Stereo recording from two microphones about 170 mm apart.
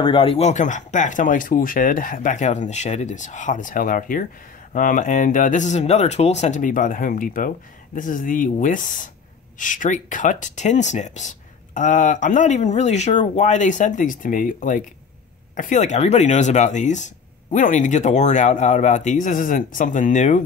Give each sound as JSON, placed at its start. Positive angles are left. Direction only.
{"t": 0.0, "sound": "speech", "side_deg": 30}